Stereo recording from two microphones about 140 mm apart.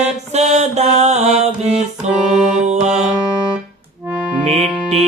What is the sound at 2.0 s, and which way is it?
Music, 55° right (ahead or behind).